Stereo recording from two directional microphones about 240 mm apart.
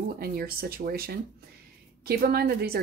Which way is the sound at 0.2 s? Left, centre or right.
Right.